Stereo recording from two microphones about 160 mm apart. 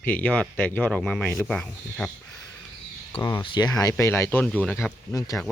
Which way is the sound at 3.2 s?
20° left (ahead or behind).